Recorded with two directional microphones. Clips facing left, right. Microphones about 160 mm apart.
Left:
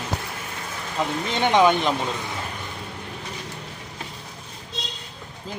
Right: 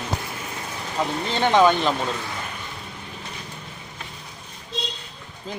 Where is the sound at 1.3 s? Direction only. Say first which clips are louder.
Right 1 dB; 15° left (ahead or behind).